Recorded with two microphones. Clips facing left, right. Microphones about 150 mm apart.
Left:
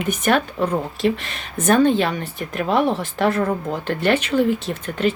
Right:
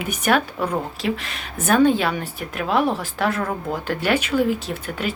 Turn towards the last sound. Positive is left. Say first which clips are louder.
# left 5 dB
turn(degrees=-5)  # may be behind; listen again after turning